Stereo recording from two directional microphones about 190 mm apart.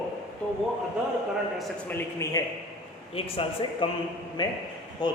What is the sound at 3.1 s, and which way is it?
A man's voice, 30° left (ahead or behind).